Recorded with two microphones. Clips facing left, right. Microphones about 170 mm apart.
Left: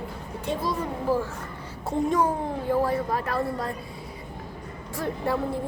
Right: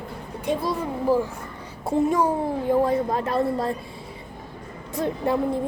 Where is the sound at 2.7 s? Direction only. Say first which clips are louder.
Right 3 dB; 20° right (ahead or behind).